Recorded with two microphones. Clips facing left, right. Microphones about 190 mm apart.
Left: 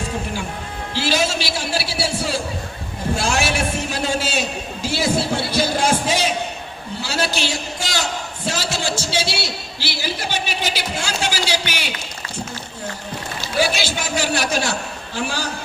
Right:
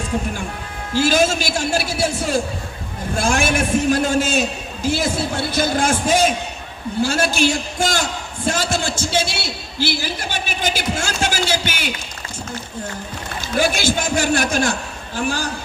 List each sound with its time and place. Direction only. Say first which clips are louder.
0.9 s a man's voice: right 5 dB; 50° right (ahead or behind)
13.6 s a man's voice: right 2 dB; 50° right (ahead or behind)